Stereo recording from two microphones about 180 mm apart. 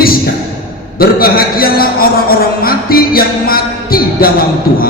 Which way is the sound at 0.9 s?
55° left (ahead or behind).